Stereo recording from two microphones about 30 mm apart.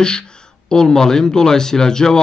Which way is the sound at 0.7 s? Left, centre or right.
Left.